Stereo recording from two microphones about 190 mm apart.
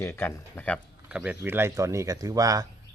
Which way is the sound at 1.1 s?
5° right (ahead or behind).